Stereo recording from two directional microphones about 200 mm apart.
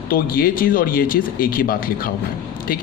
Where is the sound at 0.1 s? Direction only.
45° left (ahead or behind).